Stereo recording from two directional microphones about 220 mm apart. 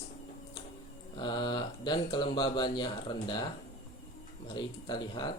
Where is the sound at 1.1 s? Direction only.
20° left (ahead or behind).